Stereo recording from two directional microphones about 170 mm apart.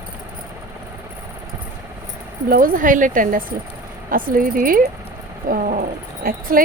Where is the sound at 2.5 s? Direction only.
55° right (ahead or behind).